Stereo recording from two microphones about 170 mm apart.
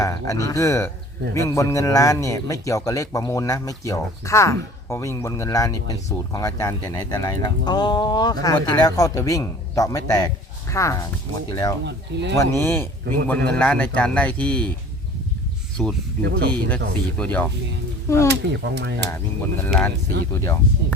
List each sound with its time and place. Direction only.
0.0 s speech: 20° left (ahead or behind)
11.9 s speech: 90° right
12.4 s speech: 15° left (ahead or behind)
15.8 s speech: 5° left (ahead or behind)
16.2 s speech: 80° right
16.5 s speech: 10° left (ahead or behind)
18.3 s speech: 85° right
20.3 s speech: 15° left (ahead or behind)